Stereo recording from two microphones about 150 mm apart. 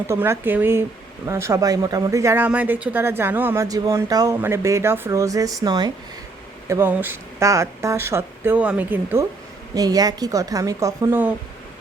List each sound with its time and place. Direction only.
0.1 s speech: 15° right (ahead or behind)
6.7 s speech: 15° right (ahead or behind)
9.7 s speech: 25° right (ahead or behind)